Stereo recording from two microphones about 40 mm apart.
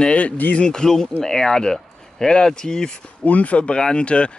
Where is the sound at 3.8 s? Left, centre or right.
Left.